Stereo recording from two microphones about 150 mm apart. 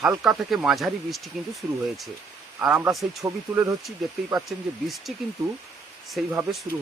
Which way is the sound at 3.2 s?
15° right (ahead or behind).